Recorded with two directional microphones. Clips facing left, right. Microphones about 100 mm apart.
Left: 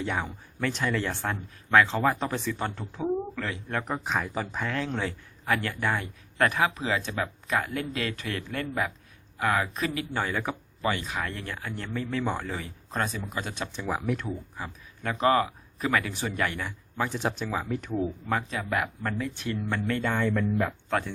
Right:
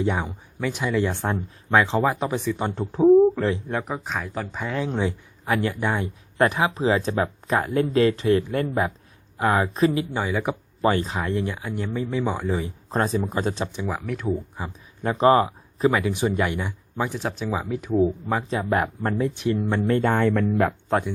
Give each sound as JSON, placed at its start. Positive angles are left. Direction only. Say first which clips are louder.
{"t": 0.0, "sound": "speech", "louder": "right 6 dB", "side_deg": -15}
{"t": 2.8, "sound": "speech", "louder": "right 18 dB", "side_deg": -35}
{"t": 3.8, "sound": "speech", "louder": "even", "side_deg": 0}
{"t": 4.6, "sound": "speech", "louder": "right 7 dB", "side_deg": -15}
{"t": 10.1, "sound": "speech", "louder": "right 4 dB", "side_deg": -15}
{"t": 10.8, "sound": "speech", "louder": "right 7 dB", "side_deg": -35}
{"t": 12.9, "sound": "speech", "louder": "right 7 dB", "side_deg": -30}
{"t": 14.3, "sound": "speech", "louder": "right 8 dB", "side_deg": -20}
{"t": 17.2, "sound": "speech", "louder": "right 3 dB", "side_deg": 0}
{"t": 17.9, "sound": "speech", "louder": "right 8 dB", "side_deg": -20}
{"t": 19.3, "sound": "speech", "louder": "right 7 dB", "side_deg": -20}
{"t": 20.1, "sound": "speech", "louder": "right 6 dB", "side_deg": -60}